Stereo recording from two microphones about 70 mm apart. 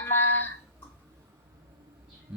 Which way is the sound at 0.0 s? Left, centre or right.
Left.